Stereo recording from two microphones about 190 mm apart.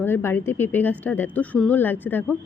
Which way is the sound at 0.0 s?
10° left (ahead or behind).